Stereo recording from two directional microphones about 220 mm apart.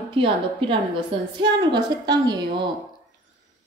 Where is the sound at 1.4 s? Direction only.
20° right (ahead or behind).